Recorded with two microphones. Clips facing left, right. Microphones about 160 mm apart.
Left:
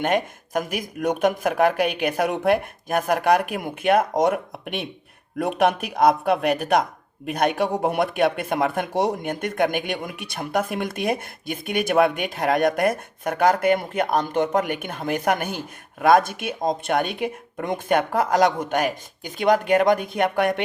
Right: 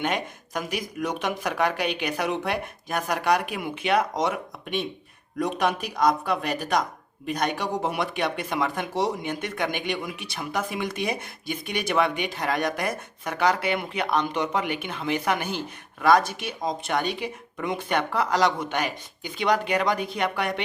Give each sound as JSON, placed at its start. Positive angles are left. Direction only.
{"t": 0.0, "sound": "speech", "side_deg": 50}